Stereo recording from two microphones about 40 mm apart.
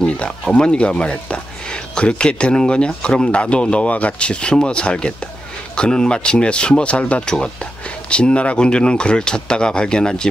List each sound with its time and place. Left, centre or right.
0.0 s speech: left
7.2 s speech: left